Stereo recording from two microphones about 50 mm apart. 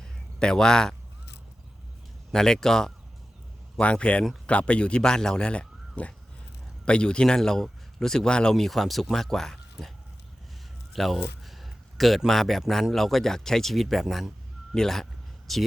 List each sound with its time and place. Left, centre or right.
0.0 s a sound: centre
2.3 s speech: centre
3.8 s a man's voice: left
8.5 s speech: centre
10.9 s a man's voice: centre